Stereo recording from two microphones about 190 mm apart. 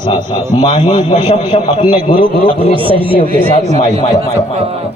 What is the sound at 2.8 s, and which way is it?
Speech, 30° right (ahead or behind).